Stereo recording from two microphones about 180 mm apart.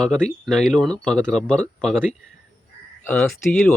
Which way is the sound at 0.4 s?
5° left (ahead or behind).